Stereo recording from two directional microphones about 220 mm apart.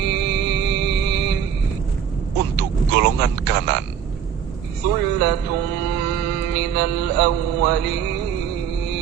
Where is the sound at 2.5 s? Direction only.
50° right (ahead or behind).